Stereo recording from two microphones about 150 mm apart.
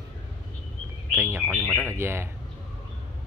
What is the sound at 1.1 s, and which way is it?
Speech, 15° right (ahead or behind).